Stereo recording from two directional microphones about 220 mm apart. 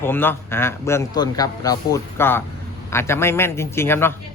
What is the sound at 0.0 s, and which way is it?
A man's voice, 10° left (ahead or behind).